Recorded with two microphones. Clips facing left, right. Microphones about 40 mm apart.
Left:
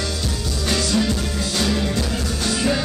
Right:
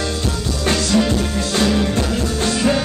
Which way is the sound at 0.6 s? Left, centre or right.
Right.